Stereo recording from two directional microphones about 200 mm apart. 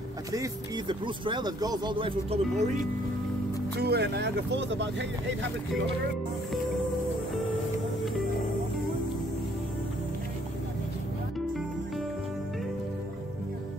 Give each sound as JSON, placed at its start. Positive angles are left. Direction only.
{"t": 0.3, "sound": "speech", "side_deg": -20}
{"t": 3.7, "sound": "speech", "side_deg": -55}